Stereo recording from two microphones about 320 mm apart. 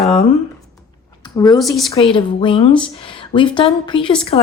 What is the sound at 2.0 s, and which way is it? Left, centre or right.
A woman's voice, centre.